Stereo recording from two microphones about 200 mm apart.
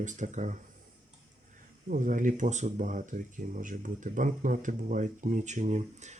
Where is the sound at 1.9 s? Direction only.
40° right (ahead or behind).